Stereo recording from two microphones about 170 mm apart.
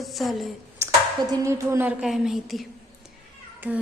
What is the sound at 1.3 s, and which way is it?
A woman's voice, 20° right (ahead or behind).